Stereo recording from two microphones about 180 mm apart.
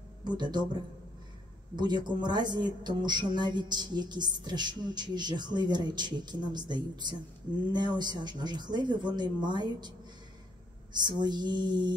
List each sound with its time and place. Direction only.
0.2 s speech: 25° right (ahead or behind)
1.8 s music: 25° right (ahead or behind)